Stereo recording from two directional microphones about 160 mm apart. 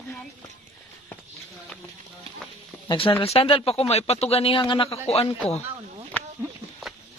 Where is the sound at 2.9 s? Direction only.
35° left (ahead or behind).